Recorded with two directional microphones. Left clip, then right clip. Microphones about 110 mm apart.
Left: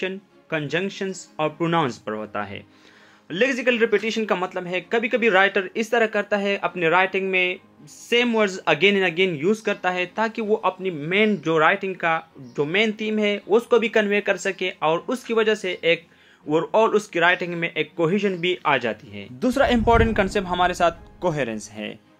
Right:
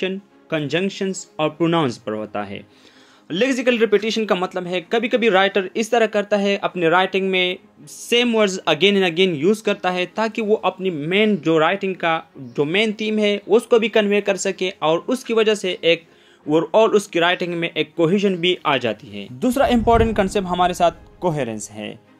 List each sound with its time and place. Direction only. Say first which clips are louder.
0.0 s speech: right 4 dB; 45° right (ahead or behind)